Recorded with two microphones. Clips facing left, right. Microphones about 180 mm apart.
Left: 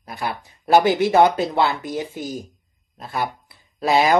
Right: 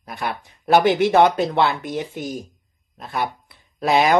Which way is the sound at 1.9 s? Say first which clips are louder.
Even; 60° right (ahead or behind).